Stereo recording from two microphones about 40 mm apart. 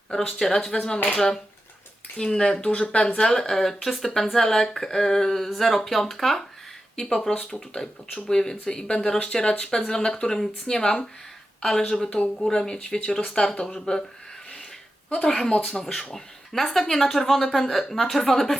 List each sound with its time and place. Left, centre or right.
0.1 s speech: centre
3.2 s speech: centre
6.9 s speech: centre
15.1 s speech: centre